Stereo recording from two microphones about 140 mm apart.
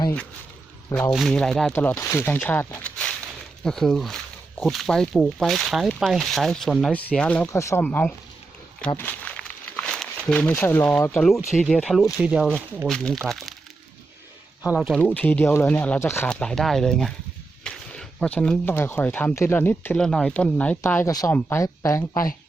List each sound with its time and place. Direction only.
1.1 s speech: centre (ahead or behind)
1.7 s speech: 15° left (ahead or behind)
7.4 s speech: 20° left (ahead or behind)
7.9 s speech: 10° left (ahead or behind)
9.0 s crumpling: 10° left (ahead or behind)
11.1 s speech: 5° left (ahead or behind)
14.8 s speech: 5° left (ahead or behind)
16.3 s speech: 5° left (ahead or behind)
20.8 s speech: 20° left (ahead or behind)